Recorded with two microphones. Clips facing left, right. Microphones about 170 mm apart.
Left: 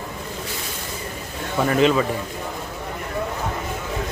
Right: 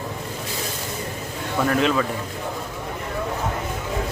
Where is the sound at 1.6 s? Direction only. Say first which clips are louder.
Left 3 dB; 5° left (ahead or behind).